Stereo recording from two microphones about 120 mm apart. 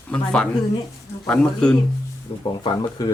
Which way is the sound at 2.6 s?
35° left (ahead or behind).